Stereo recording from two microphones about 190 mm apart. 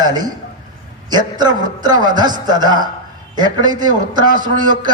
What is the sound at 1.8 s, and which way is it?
A man's voice, 20° right (ahead or behind).